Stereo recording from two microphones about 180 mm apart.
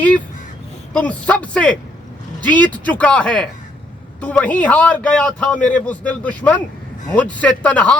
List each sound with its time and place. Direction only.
0.9 s a man's voice: 10° left (ahead or behind)